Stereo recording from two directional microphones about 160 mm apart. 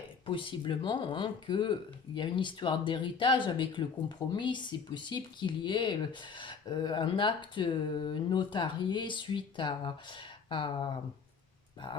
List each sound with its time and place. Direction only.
0.3 s speech: 30° left (ahead or behind)